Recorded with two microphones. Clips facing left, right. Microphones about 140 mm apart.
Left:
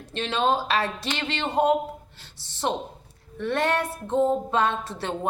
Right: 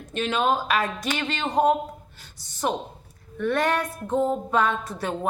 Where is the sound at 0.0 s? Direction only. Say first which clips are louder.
Right 1 dB; 30° left (ahead or behind).